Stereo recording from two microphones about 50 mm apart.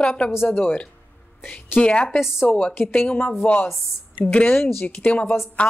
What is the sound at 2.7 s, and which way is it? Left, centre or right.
Speech, left.